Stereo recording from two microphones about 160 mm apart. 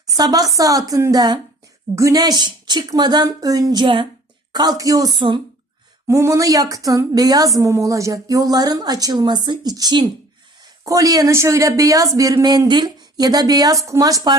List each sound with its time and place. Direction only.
0.2 s speech: 25° right (ahead or behind)
6.1 s speech: 20° right (ahead or behind)